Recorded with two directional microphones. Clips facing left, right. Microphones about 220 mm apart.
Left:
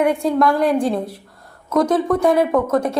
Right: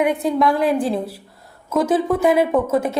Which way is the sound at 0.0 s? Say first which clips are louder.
Left 1 dB; centre (ahead or behind).